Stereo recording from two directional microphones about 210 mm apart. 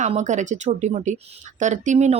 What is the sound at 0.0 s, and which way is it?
Speech, 35° right (ahead or behind).